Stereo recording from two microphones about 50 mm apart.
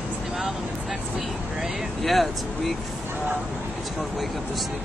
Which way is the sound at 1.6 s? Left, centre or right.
Centre.